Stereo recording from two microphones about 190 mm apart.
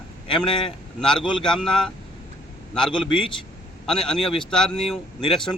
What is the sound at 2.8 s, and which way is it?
Speech, 25° left (ahead or behind).